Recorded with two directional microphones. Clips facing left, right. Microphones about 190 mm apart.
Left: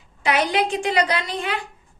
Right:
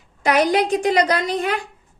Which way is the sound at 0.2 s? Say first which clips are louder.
Right 4 dB; 40° right (ahead or behind).